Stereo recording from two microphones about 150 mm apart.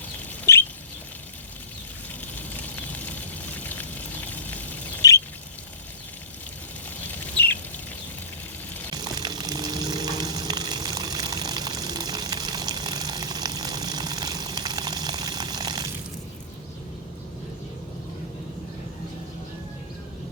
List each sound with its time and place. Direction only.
0.5 s rodents: 20° left (ahead or behind)
2.2 s water: 10° left (ahead or behind)
4.3 s a sound: 10° left (ahead or behind)
5.0 s bird: 20° left (ahead or behind)
7.2 s a sound: 15° left (ahead or behind)
9.0 s water: 25° right (ahead or behind)